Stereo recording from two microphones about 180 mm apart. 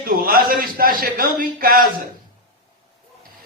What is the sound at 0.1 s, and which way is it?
A man's voice, 55° right (ahead or behind).